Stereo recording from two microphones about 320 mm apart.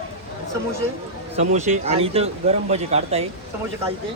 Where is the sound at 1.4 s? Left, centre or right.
Right.